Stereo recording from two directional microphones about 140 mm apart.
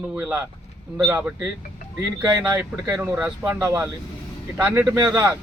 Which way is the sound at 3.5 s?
20° right (ahead or behind).